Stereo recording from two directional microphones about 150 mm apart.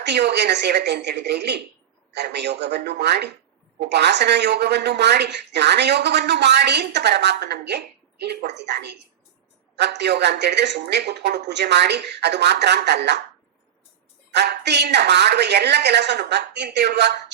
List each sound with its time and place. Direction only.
0.1 s speech: 90° right
14.3 s speech: 90° right